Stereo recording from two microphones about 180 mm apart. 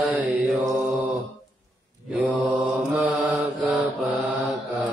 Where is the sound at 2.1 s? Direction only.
5° right (ahead or behind).